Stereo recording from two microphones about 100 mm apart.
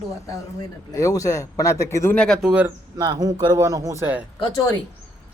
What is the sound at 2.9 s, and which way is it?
Speech, 35° right (ahead or behind).